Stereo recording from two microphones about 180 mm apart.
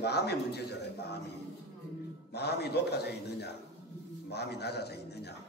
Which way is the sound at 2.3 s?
65° left (ahead or behind).